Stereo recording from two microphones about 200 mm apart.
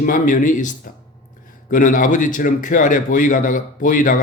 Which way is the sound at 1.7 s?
40° left (ahead or behind).